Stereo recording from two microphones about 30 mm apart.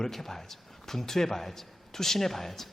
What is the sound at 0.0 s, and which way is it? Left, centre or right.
A man's voice, centre.